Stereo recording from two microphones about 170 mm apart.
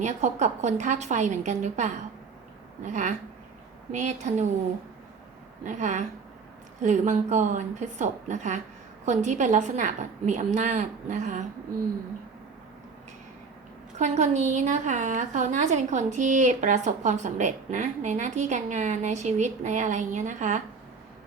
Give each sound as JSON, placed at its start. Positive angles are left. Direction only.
{"t": 0.0, "sound": "a woman's voice", "side_deg": -45}
{"t": 5.6, "sound": "a woman's voice", "side_deg": -45}
{"t": 14.0, "sound": "a woman's voice", "side_deg": -45}